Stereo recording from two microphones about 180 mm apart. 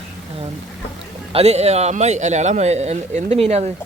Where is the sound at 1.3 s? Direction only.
35° right (ahead or behind).